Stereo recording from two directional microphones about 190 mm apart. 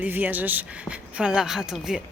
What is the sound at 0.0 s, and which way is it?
Speech, 10° right (ahead or behind).